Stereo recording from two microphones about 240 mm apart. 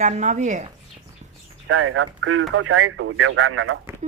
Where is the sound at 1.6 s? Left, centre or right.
Right.